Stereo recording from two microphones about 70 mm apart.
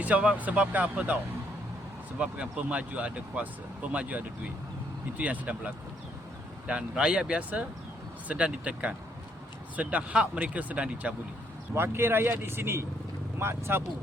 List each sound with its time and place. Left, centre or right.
0.0 s speech: right
11.7 s speech: right